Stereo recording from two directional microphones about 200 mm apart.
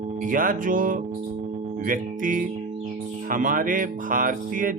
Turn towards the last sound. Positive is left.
turn(degrees=-40)  # may be behind; listen again after turning